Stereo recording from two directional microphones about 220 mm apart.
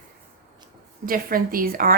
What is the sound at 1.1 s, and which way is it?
Speech, 40° right (ahead or behind).